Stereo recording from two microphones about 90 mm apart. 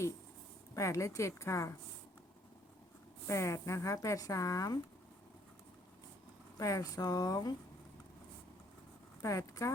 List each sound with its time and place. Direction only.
0.7 s speech: 35° left (ahead or behind)
3.2 s speech: 35° left (ahead or behind)
6.6 s speech: 40° left (ahead or behind)
9.2 s speech: 35° left (ahead or behind)